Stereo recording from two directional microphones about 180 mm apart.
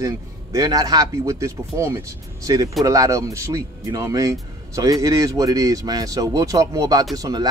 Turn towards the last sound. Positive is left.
turn(degrees=-20)  # may be behind; listen again after turning